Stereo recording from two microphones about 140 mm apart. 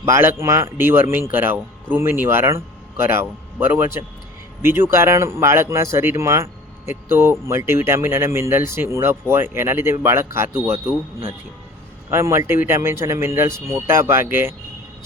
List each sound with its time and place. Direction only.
0.0 s speech: 15° right (ahead or behind)
12.1 s speech: 20° right (ahead or behind)